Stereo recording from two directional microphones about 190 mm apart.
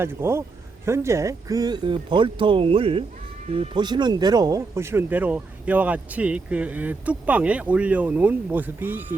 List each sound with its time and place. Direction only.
0.0 s speech: 10° right (ahead or behind)